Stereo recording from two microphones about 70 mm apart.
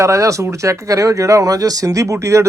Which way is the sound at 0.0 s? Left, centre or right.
Right.